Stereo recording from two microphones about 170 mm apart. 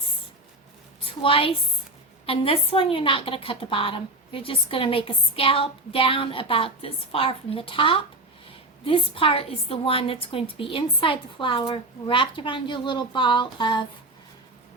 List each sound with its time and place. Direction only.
1.0 s a woman's voice: 30° left (ahead or behind)